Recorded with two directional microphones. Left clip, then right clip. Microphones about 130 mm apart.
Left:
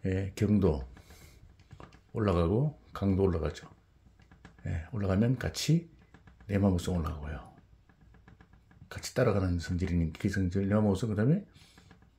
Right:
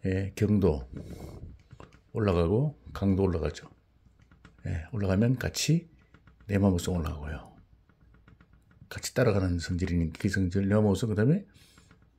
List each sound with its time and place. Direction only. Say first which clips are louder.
0.0 s speech: right 3 dB; 25° right (ahead or behind)
4.6 s speech: right 2 dB; 25° right (ahead or behind)
8.8 s speech: right 2 dB; 30° right (ahead or behind)